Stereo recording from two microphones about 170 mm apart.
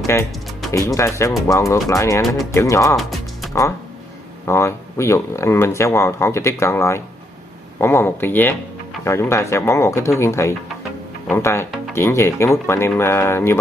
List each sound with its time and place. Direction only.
0.0 s speech: 15° left (ahead or behind)
3.0 s music: centre (ahead or behind)
4.5 s speech: 15° left (ahead or behind)